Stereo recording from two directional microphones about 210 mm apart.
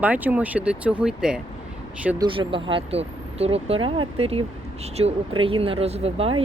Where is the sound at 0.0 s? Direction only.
5° right (ahead or behind).